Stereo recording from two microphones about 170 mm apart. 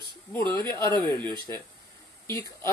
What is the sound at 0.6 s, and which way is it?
Speech, 25° right (ahead or behind).